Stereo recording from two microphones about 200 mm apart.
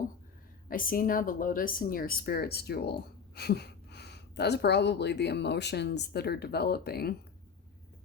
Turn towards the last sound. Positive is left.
turn(degrees=50)  # may be behind; listen again after turning